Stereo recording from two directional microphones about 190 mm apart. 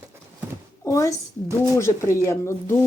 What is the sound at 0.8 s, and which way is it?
A woman's voice, 15° left (ahead or behind).